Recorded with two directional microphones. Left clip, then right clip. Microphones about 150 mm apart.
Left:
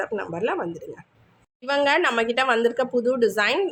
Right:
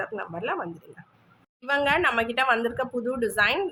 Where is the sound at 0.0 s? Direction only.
30° left (ahead or behind).